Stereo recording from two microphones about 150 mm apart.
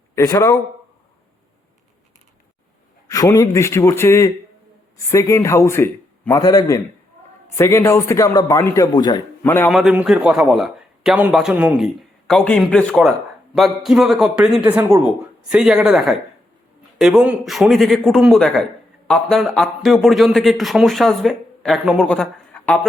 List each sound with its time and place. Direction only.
0.2 s a man's voice: 20° left (ahead or behind)
3.1 s a man's voice: 20° left (ahead or behind)
9.4 s speech: 15° left (ahead or behind)
9.6 s a man's voice: centre (ahead or behind)